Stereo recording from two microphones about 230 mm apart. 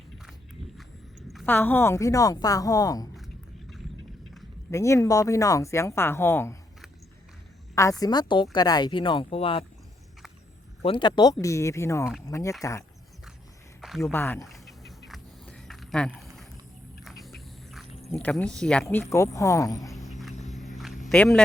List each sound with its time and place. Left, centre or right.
1.3 s speech: centre
4.7 s speech: centre
7.8 s a woman's voice: centre
10.8 s speech: left
14.0 s speech: centre
14.5 s a sound: centre
18.1 s speech: centre
20.0 s a sound: centre